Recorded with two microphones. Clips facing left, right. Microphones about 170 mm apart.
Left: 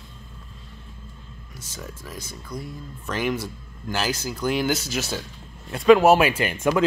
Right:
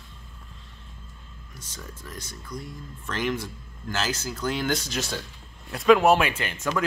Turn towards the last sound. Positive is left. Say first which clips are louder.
# left 6 dB
turn(degrees=10)  # may be behind; listen again after turning